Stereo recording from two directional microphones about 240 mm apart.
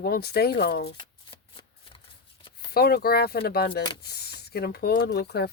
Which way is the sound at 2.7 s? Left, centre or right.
Left.